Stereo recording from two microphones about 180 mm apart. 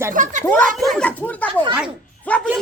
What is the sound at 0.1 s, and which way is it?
Speech, 45° right (ahead or behind).